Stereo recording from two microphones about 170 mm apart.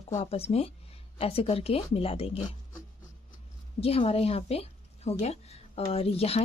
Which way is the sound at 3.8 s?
35° left (ahead or behind).